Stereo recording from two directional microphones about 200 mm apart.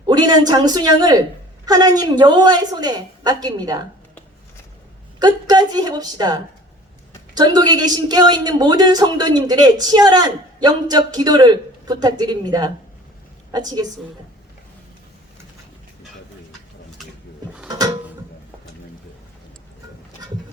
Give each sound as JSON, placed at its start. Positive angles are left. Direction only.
{"t": 0.0, "sound": "speech", "side_deg": -20}
{"t": 5.2, "sound": "speech", "side_deg": -20}
{"t": 17.7, "sound": "a sound", "side_deg": -20}